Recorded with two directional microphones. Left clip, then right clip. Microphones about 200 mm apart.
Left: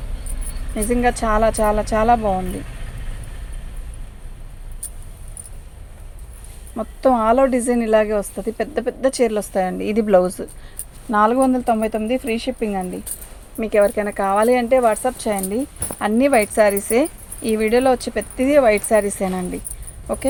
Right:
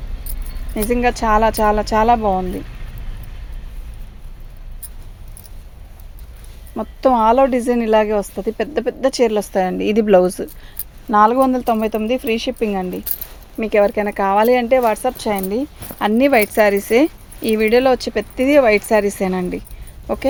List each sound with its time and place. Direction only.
0.8 s speech: 45° right (ahead or behind)
6.7 s speech: 45° right (ahead or behind)